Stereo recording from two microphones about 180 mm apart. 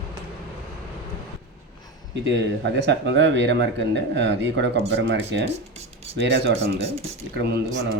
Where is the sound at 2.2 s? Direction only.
80° right.